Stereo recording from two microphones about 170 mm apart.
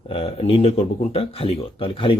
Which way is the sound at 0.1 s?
35° left (ahead or behind).